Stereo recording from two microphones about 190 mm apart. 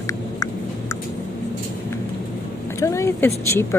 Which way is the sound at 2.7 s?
15° left (ahead or behind).